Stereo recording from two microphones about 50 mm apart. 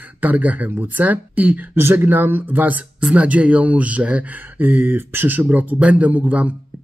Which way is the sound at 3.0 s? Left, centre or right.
Right.